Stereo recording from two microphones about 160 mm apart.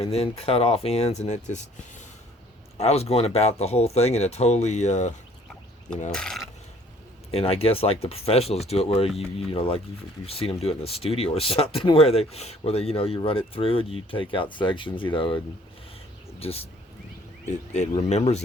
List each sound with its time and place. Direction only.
0.0 s speech: 40° left (ahead or behind)
2.7 s speech: 40° left (ahead or behind)
6.1 s speech: 5° left (ahead or behind)
7.3 s speech: 40° left (ahead or behind)
16.4 s speech: 40° left (ahead or behind)